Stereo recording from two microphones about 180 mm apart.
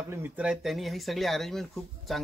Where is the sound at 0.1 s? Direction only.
10° right (ahead or behind).